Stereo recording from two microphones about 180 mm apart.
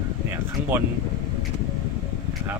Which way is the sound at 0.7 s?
10° right (ahead or behind).